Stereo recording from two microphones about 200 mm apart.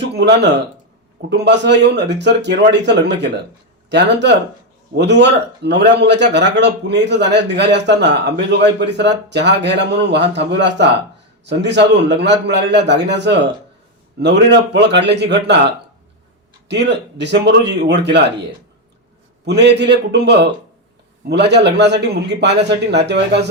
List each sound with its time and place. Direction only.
0.1 s a man's voice: 60° right (ahead or behind)
16.6 s a man's voice: 60° right (ahead or behind)
19.5 s a man's voice: 60° right (ahead or behind)